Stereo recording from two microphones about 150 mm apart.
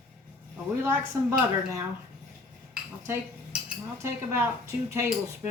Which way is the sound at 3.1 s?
15° right (ahead or behind).